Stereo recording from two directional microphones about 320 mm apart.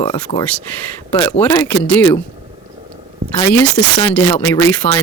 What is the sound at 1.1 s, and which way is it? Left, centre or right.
Speech, centre.